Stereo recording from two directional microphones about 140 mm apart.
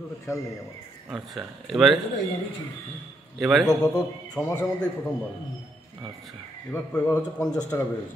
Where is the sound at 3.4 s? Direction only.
Centre (ahead or behind).